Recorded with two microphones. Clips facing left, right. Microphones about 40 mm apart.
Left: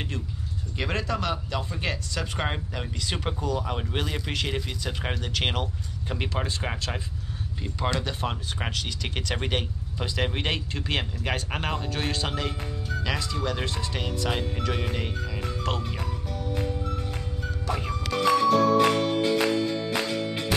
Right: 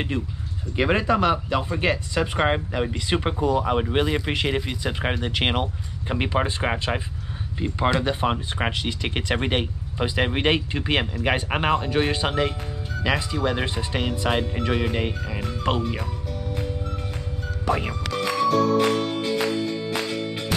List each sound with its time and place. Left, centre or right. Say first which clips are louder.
0.1 s speech: right 5 dB; right
18.1 s music: left 1 dB; centre